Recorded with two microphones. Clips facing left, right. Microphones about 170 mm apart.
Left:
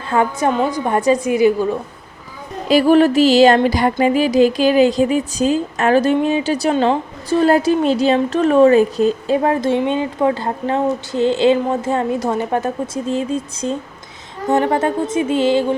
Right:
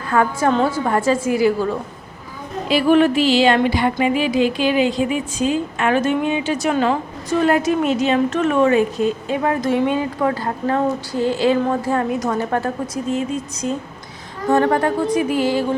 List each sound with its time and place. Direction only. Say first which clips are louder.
0.1 s speech: even; 20° left (ahead or behind)
2.6 s music: left 3 dB; 40° left (ahead or behind)
9.2 s speech: left 4 dB; 35° left (ahead or behind); by 13.0 s 20° left (ahead or behind)
13.1 s music: left 2 dB; 30° left (ahead or behind)
14.5 s speech: even; 20° left (ahead or behind)